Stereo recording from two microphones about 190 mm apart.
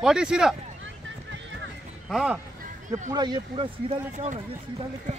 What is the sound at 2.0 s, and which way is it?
Speech, 5° right (ahead or behind).